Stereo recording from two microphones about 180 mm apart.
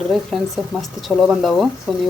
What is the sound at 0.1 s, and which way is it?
Speech, centre (ahead or behind).